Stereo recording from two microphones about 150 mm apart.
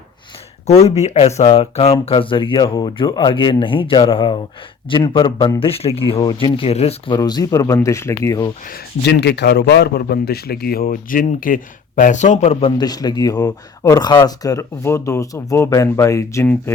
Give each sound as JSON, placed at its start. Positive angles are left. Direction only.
{"t": 0.7, "sound": "speech", "side_deg": 45}
{"t": 7.1, "sound": "speech", "side_deg": 30}
{"t": 8.6, "sound": "speech", "side_deg": 85}
{"t": 12.8, "sound": "speech", "side_deg": 25}